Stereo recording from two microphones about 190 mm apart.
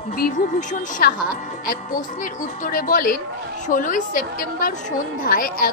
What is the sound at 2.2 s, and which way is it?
Speech, 45° left (ahead or behind).